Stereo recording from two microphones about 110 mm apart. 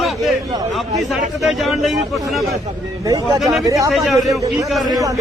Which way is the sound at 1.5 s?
Centre (ahead or behind).